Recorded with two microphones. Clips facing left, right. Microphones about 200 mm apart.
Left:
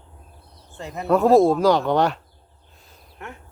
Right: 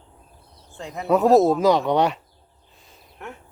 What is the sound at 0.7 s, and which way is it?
Speech, centre (ahead or behind).